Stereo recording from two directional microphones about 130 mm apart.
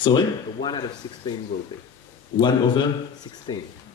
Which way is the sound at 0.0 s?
35° left (ahead or behind).